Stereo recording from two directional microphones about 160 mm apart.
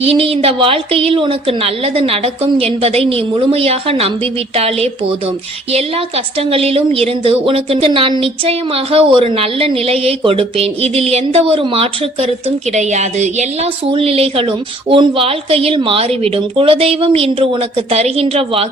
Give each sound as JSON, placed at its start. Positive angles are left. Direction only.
{"t": 0.0, "sound": "a woman's voice", "side_deg": -35}